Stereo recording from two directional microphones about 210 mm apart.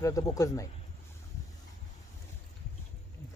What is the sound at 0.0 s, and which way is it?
Speech, 15° left (ahead or behind).